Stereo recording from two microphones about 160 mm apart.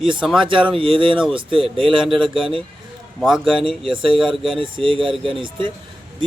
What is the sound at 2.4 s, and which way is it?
Speech, 35° right (ahead or behind).